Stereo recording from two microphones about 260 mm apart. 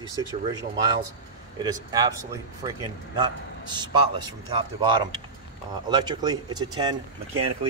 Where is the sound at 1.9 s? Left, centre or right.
Centre.